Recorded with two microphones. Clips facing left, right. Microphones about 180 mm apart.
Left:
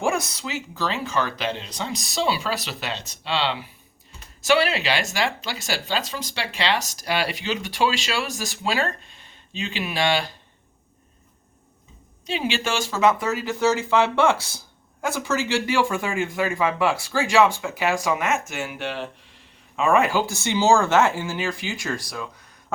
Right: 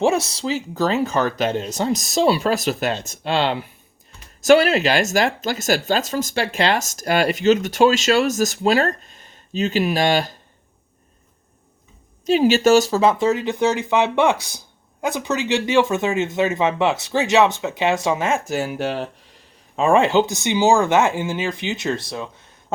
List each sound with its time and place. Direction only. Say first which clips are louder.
0.0 s speech: right 6 dB; 25° right (ahead or behind); by 10.3 s 45° right (ahead or behind)
12.2 s speech: right 11 dB; 40° right (ahead or behind); by 22.4 s 25° right (ahead or behind)